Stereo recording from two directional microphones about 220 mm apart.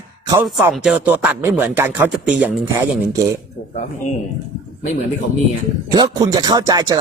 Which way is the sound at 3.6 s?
35° left (ahead or behind).